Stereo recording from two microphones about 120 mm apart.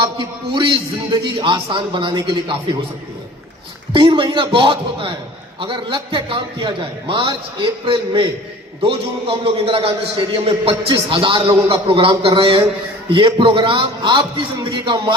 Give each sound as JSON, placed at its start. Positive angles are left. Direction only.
{"t": 0.0, "sound": "a man's voice", "side_deg": -40}
{"t": 3.9, "sound": "a man's voice", "side_deg": -45}